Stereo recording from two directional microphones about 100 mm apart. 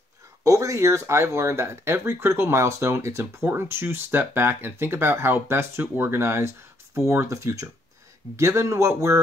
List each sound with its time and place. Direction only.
0.4 s speech: 35° right (ahead or behind)